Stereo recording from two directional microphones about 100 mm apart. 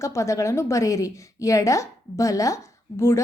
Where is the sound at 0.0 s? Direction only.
30° left (ahead or behind).